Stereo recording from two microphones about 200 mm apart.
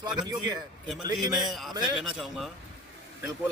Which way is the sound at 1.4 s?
Centre (ahead or behind).